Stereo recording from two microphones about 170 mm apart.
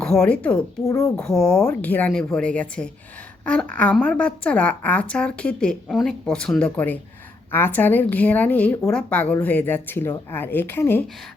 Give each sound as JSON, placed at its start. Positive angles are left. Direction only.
{"t": 0.0, "sound": "a woman's voice", "side_deg": 5}
{"t": 1.1, "sound": "a woman's voice", "side_deg": 5}